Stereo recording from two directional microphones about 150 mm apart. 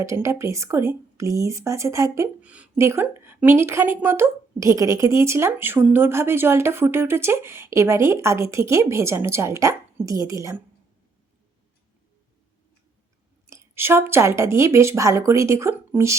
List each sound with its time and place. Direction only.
0.0 s speech: 20° right (ahead or behind)
13.5 s speech: 15° right (ahead or behind)